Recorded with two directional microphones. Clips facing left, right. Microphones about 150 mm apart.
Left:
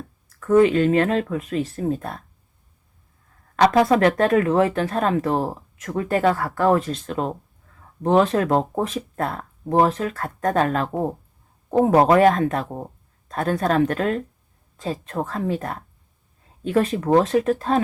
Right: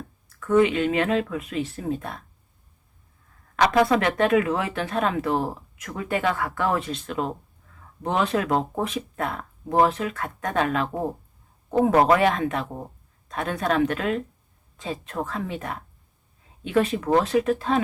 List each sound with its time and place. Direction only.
0.3 s speech: 40° left (ahead or behind)
3.5 s speech: 40° left (ahead or behind)
11.9 s speech: 40° left (ahead or behind)
16.9 s speech: 35° left (ahead or behind)